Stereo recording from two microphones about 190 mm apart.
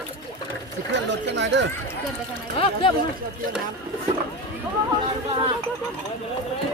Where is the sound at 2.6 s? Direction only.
30° left (ahead or behind).